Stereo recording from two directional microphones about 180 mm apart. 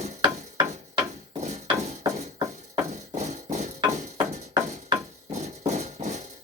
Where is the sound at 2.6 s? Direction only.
40° right (ahead or behind).